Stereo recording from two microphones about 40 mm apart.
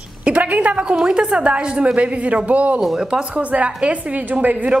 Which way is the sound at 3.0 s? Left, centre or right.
Right.